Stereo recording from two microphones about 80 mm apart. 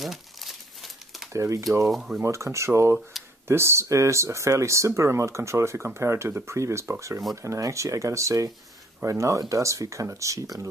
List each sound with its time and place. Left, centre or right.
0.0 s crumpling: centre
1.3 s speech: right
1.9 s speech: centre
2.2 s speech: right